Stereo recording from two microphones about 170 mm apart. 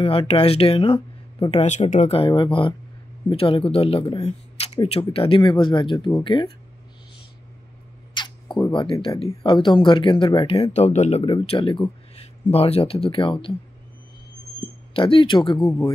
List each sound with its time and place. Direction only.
0.0 s speech: 35° left (ahead or behind)
4.2 s camera: 40° left (ahead or behind)
4.7 s speech: 35° left (ahead or behind)
8.1 s a sound: 25° left (ahead or behind)
9.3 s speech: 30° left (ahead or behind)
15.0 s speech: 30° left (ahead or behind)